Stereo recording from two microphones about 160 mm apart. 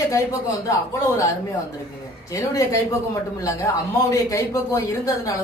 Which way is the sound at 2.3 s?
20° left (ahead or behind).